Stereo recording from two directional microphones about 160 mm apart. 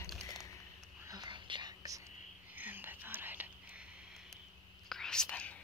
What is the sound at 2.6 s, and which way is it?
Whispering, 10° right (ahead or behind).